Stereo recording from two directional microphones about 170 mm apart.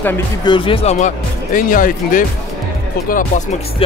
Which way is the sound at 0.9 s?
50° left (ahead or behind).